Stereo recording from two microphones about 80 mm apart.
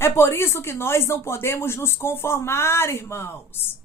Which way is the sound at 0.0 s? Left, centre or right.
Left.